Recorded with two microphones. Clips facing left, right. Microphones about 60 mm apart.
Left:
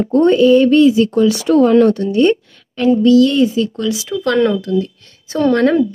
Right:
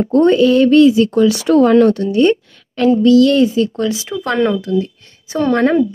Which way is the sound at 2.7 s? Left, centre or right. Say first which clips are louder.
Even; right.